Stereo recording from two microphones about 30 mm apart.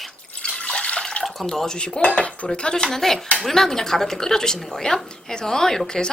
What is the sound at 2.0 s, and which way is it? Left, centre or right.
Cutlery, left.